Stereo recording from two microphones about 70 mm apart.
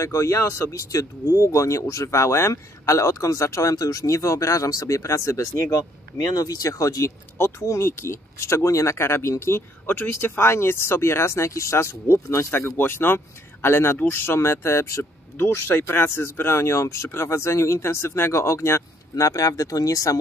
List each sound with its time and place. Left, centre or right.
0.0 s speech: left